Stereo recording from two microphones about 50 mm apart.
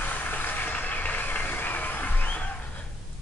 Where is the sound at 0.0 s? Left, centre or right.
Left.